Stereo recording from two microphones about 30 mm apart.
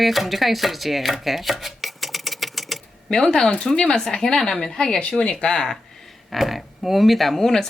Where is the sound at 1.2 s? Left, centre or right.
Centre.